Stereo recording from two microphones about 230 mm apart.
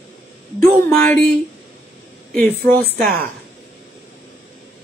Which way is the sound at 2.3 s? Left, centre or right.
Centre.